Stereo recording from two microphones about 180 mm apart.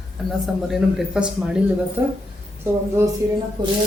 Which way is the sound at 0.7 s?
5° right (ahead or behind).